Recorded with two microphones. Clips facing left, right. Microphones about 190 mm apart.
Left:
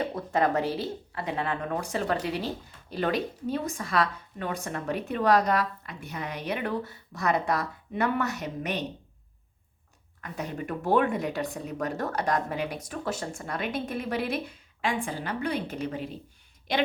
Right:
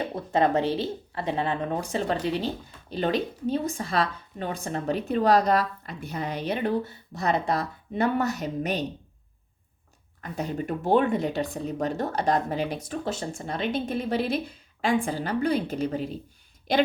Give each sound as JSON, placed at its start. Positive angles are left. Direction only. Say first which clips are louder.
{"t": 0.2, "sound": "speech", "louder": "right 4 dB", "side_deg": -25}
{"t": 10.2, "sound": "a woman's voice", "louder": "right 4 dB", "side_deg": -30}